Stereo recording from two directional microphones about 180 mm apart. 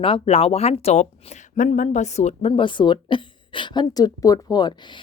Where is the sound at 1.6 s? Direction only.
45° left (ahead or behind).